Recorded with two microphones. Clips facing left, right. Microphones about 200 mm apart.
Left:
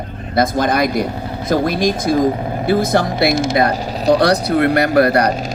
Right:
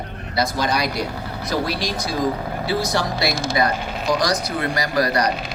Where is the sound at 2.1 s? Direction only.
20° left (ahead or behind).